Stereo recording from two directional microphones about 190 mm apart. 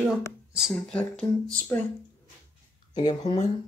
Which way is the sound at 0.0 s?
Centre (ahead or behind).